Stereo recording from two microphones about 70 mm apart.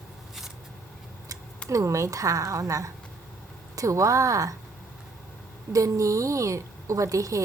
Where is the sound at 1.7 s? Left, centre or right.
Right.